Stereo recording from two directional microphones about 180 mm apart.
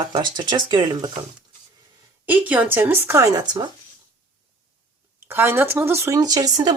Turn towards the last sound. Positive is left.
turn(degrees=-20)  # may be behind; listen again after turning